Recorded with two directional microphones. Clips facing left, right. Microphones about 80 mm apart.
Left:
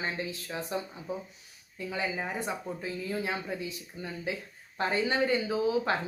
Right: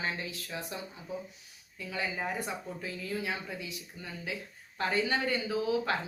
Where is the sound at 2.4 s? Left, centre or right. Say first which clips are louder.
Left 3 dB; left.